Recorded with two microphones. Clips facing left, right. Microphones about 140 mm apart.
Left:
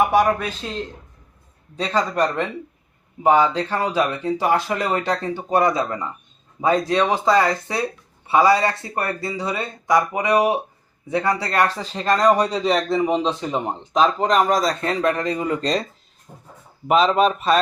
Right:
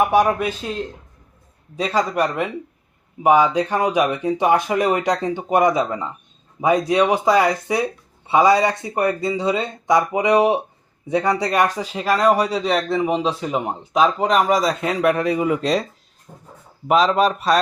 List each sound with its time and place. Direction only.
0.1 s speech: 15° right (ahead or behind)
1.7 s speech: 10° right (ahead or behind)
16.9 s a man's voice: centre (ahead or behind)